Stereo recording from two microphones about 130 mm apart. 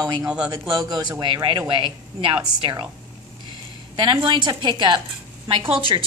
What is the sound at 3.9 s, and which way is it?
A woman's voice, 35° right (ahead or behind).